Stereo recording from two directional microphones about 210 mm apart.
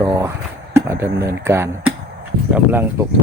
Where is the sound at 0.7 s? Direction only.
10° right (ahead or behind).